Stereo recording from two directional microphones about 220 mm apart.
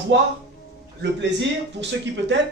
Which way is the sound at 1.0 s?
55° right (ahead or behind).